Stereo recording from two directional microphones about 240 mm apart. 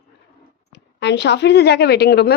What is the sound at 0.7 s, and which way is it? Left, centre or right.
A woman's voice, left.